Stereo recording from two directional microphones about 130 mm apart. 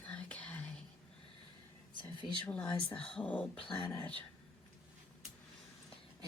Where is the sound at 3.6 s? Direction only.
40° left (ahead or behind).